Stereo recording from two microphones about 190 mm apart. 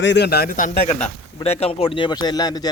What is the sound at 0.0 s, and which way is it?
A man's voice, 65° left (ahead or behind).